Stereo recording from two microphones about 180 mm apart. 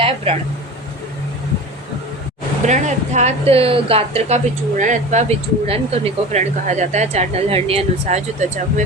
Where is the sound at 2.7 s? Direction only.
40° right (ahead or behind).